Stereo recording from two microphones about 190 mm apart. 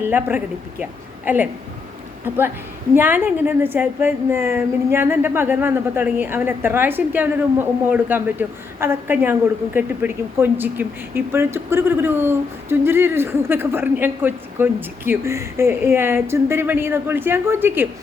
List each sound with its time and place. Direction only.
0.0 s speech: 10° right (ahead or behind)
2.9 s speech: 10° right (ahead or behind)